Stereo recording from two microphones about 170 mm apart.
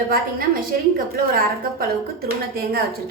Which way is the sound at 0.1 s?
55° right (ahead or behind).